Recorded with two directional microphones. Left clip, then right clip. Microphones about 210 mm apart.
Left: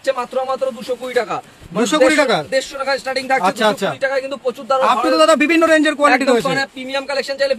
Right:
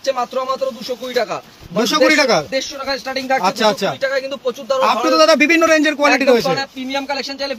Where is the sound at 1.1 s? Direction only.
20° left (ahead or behind).